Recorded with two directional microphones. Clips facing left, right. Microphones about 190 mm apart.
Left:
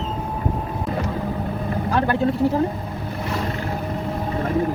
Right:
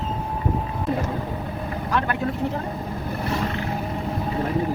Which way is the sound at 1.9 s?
35° left (ahead or behind).